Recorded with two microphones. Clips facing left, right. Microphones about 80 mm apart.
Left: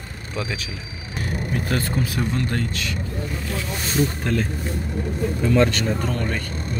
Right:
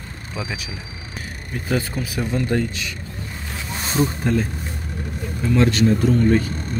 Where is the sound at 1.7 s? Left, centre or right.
Centre.